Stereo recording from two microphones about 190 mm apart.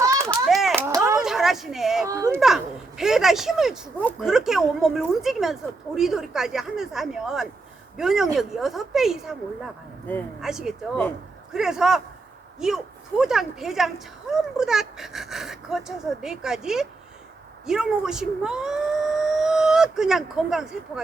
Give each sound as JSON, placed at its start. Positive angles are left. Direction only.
{"t": 0.3, "sound": "children playing", "side_deg": 0}
{"t": 0.8, "sound": "a sound", "side_deg": -15}
{"t": 1.2, "sound": "a sound", "side_deg": 0}
{"t": 2.0, "sound": "a child's voice", "side_deg": -15}
{"t": 3.0, "sound": "speech", "side_deg": 0}
{"t": 10.1, "sound": "speech", "side_deg": 10}
{"t": 10.4, "sound": "speech", "side_deg": -5}